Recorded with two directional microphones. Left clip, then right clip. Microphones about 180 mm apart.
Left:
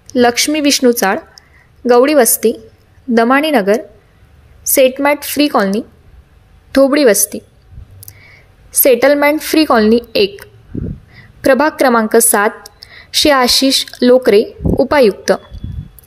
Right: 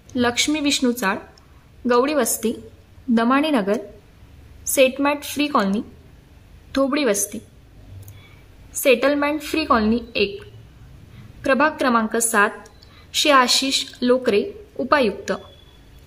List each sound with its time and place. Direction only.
0.1 s a woman's voice: 20° left (ahead or behind)
6.8 s a woman's voice: 25° left (ahead or behind)
8.8 s a woman's voice: 30° left (ahead or behind)
11.4 s a woman's voice: 30° left (ahead or behind)